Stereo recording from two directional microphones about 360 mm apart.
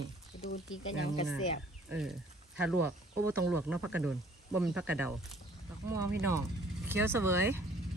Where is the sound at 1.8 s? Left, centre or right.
Centre.